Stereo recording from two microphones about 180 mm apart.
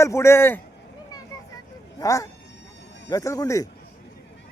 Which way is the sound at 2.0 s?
15° left (ahead or behind).